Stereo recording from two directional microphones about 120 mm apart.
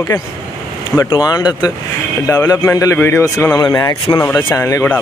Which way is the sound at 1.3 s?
35° left (ahead or behind).